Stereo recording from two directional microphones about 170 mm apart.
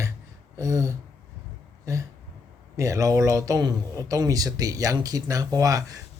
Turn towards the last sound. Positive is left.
turn(degrees=-20)  # may be behind; listen again after turning